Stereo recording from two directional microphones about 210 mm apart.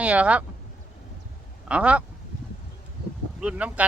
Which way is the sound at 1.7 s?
5° right (ahead or behind).